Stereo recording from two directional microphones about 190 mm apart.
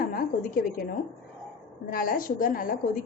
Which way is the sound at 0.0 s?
50° left (ahead or behind).